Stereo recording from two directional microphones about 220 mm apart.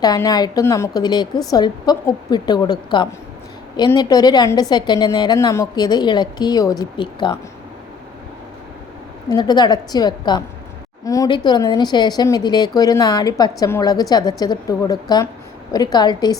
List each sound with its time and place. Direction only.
0.0 s a woman's voice: 15° left (ahead or behind)
9.3 s a woman's voice: 20° left (ahead or behind)